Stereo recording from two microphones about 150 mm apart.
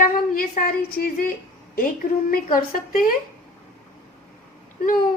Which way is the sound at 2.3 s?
65° left (ahead or behind).